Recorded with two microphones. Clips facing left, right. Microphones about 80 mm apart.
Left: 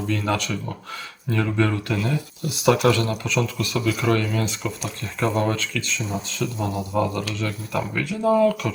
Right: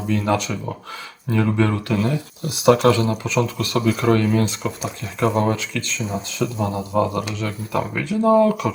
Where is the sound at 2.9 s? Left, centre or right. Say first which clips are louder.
Right 3 dB; centre.